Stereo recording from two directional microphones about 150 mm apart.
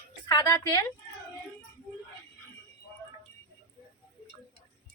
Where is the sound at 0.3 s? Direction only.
25° left (ahead or behind).